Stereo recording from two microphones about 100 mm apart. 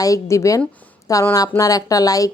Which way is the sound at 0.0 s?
35° left (ahead or behind).